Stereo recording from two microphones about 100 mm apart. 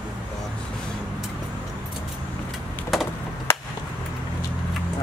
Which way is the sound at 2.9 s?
Centre (ahead or behind).